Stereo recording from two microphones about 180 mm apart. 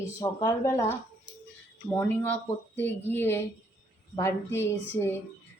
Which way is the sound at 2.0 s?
10° left (ahead or behind).